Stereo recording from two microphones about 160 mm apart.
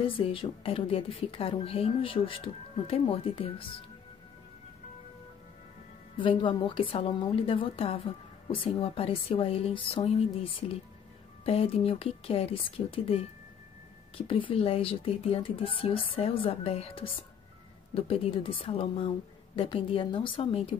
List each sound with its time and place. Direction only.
0.0 s a woman's voice: 35° left (ahead or behind)
6.1 s a woman's voice: 30° left (ahead or behind)